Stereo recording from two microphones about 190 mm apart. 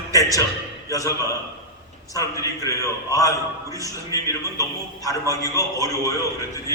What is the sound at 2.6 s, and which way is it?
A man's voice, 20° left (ahead or behind).